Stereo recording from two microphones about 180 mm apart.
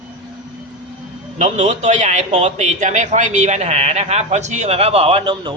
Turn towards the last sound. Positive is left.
turn(degrees=-25)  # may be behind; listen again after turning